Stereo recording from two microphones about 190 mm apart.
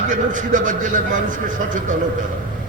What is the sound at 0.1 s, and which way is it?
A man's voice, 45° right (ahead or behind).